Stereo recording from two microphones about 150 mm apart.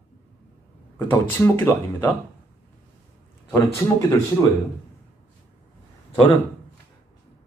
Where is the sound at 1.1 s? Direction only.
15° left (ahead or behind).